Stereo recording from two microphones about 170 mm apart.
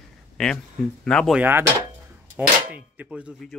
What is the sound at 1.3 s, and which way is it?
Speech, 10° right (ahead or behind).